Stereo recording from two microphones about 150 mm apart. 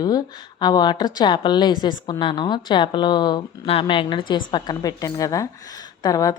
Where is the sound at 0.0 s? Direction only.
25° left (ahead or behind).